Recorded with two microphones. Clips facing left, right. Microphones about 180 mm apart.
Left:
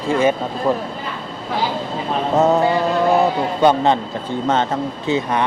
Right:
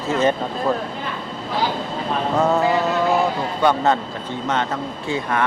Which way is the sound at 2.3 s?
20° left (ahead or behind).